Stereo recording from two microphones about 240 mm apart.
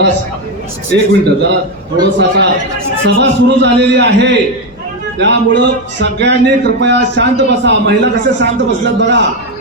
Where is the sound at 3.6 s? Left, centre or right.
Right.